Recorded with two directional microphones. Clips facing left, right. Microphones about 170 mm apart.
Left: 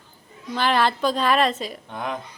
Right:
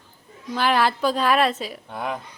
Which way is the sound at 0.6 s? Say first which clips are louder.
Even; 10° right (ahead or behind).